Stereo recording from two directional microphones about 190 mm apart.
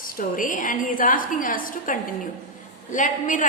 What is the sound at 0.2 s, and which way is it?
A woman's voice, 45° left (ahead or behind).